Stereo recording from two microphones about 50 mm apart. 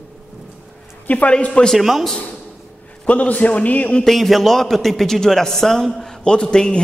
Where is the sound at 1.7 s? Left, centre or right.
Centre.